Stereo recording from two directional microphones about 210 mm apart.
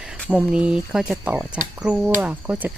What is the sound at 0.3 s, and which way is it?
Speech, 5° right (ahead or behind).